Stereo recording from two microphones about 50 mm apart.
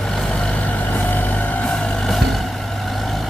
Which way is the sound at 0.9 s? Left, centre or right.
Left.